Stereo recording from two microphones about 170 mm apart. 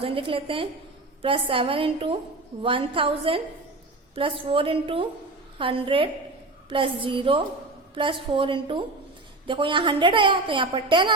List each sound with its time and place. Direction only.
0.0 s a woman's voice: 30° right (ahead or behind)